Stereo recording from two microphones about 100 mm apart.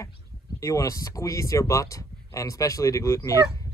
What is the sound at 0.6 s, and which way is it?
Speech, 35° left (ahead or behind).